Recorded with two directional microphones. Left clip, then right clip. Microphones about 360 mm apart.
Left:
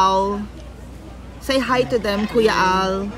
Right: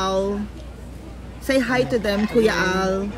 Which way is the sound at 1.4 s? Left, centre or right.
Left.